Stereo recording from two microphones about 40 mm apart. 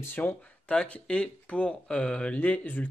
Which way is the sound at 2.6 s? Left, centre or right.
Left.